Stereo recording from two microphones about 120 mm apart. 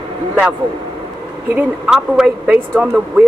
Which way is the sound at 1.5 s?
10° right (ahead or behind).